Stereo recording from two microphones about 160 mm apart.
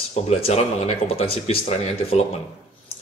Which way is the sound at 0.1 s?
40° left (ahead or behind).